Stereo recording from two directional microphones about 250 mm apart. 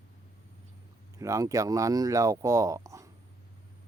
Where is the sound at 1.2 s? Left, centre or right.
Centre.